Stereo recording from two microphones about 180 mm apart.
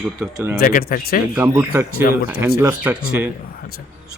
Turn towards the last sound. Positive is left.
turn(degrees=-10)  # may be behind; listen again after turning